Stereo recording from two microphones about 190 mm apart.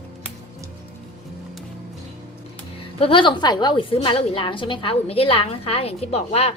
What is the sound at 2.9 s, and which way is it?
A woman's voice, 25° left (ahead or behind).